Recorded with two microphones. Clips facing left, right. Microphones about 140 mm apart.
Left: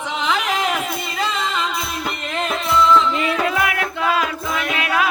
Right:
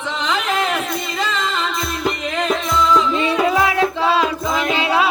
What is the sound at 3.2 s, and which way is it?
Music, 25° right (ahead or behind).